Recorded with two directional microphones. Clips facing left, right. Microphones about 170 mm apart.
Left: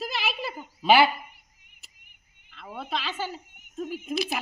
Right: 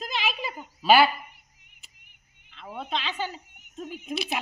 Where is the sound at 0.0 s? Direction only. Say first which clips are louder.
Even; 5° left (ahead or behind).